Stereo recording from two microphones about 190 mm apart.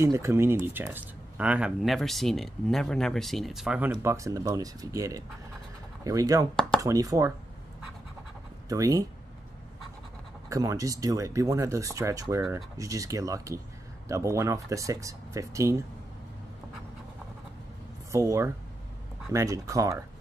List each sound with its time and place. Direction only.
0.0 s speech: 15° right (ahead or behind)
8.6 s speech: 20° right (ahead or behind)
10.5 s speech: 15° right (ahead or behind)
18.1 s speech: 15° right (ahead or behind)